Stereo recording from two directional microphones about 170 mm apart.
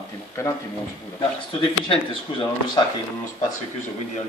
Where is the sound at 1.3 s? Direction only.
30° left (ahead or behind).